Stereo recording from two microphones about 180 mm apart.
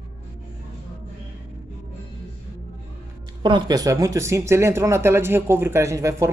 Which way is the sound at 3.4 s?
25° right (ahead or behind).